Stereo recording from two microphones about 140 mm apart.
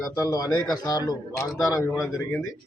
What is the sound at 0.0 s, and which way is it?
A man's voice, 25° left (ahead or behind).